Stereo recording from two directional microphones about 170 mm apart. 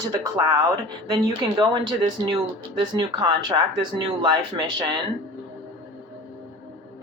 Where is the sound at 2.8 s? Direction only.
25° right (ahead or behind).